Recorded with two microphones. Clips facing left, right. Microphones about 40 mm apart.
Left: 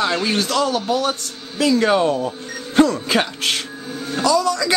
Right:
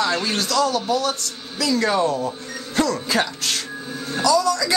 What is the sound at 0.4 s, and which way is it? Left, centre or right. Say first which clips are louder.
Speech: left 1 dB; left.